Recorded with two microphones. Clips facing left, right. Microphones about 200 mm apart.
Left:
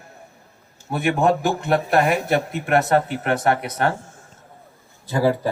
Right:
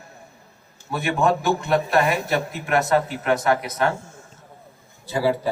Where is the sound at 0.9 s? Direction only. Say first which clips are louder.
Left 2 dB; 55° left (ahead or behind).